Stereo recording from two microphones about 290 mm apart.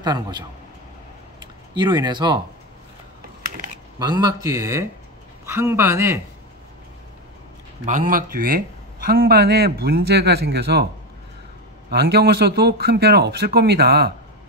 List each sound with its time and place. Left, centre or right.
0.0 s speech: centre
1.8 s speech: centre
4.0 s speech: centre
7.8 s a man's voice: right
11.9 s a man's voice: right